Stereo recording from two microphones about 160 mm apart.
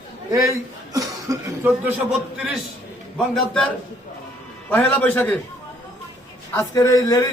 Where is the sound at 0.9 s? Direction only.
20° right (ahead or behind).